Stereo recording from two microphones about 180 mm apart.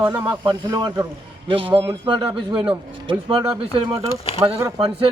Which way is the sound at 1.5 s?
30° right (ahead or behind).